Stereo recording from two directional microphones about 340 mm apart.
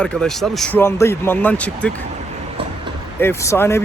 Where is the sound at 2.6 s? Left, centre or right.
Centre.